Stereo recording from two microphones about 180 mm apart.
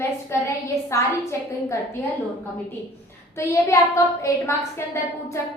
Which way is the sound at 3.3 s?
15° left (ahead or behind).